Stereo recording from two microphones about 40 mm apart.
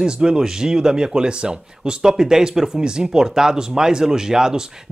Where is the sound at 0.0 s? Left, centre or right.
Centre.